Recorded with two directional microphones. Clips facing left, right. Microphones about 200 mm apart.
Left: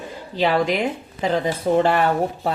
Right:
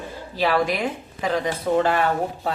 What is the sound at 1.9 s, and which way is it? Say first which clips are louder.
Speech: left 3 dB; 40° left (ahead or behind).